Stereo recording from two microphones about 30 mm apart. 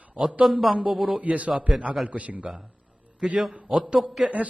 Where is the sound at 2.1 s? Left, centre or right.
Right.